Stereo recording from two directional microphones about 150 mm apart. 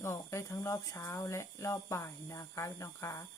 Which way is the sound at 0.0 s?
20° left (ahead or behind).